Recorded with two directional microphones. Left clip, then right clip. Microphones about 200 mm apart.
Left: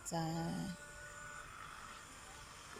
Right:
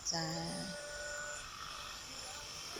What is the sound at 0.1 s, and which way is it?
Speech, 10° left (ahead or behind).